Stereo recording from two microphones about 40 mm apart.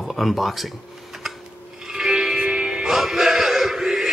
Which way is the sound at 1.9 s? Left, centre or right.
Centre.